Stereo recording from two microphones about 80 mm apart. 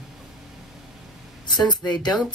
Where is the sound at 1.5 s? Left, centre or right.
Left.